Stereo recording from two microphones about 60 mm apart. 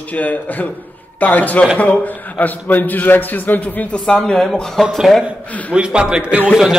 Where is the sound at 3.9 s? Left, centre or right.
Centre.